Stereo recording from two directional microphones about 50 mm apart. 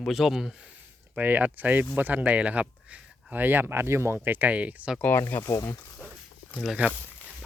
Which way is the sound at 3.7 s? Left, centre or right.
Right.